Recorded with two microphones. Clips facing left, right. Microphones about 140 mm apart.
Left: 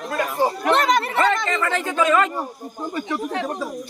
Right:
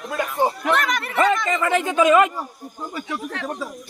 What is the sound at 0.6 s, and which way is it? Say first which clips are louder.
Speech: left 3 dB; 30° left (ahead or behind).